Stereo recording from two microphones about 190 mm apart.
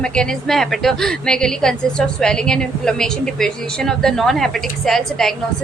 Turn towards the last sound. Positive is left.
turn(degrees=0)  # may be behind; listen again after turning